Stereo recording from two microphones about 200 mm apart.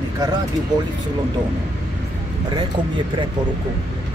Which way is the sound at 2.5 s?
25° right (ahead or behind).